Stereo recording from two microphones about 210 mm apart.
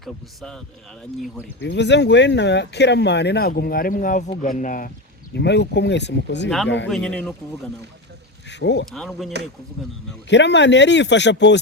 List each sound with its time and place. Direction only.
0.0 s a man's voice: 5° left (ahead or behind)
1.6 s speech: 55° left (ahead or behind); by 4.9 s 40° left (ahead or behind)
5.3 s speech: 55° left (ahead or behind)
6.8 s a man's voice: 5° left (ahead or behind)
8.4 s speech: 55° left (ahead or behind)
8.9 s a man's voice: centre (ahead or behind)
10.2 s speech: 55° left (ahead or behind)